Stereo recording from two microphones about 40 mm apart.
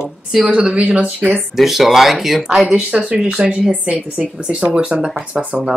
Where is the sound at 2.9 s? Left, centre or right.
Right.